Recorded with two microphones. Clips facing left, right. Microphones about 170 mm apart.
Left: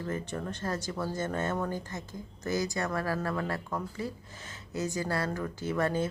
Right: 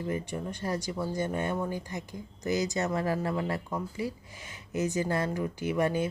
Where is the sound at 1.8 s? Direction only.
15° right (ahead or behind).